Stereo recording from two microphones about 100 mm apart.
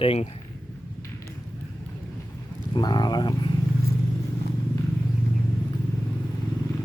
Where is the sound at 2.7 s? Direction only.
45° left (ahead or behind).